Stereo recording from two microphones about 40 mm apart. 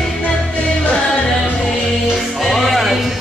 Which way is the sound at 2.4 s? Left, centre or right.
Centre.